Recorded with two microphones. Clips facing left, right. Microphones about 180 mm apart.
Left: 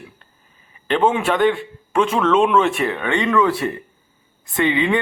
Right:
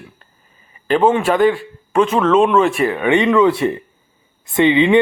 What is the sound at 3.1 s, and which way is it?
Speech, 20° right (ahead or behind).